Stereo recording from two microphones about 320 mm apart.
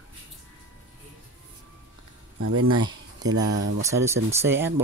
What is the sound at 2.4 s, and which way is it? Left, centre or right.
Speech, right.